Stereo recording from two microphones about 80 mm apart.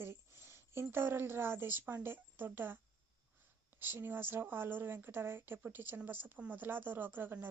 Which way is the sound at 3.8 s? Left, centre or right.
Right.